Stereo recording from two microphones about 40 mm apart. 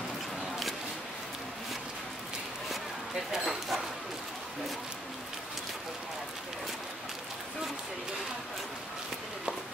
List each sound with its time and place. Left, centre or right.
3.3 s speech: centre